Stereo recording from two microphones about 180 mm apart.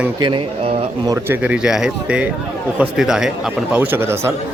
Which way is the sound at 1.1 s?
10° right (ahead or behind).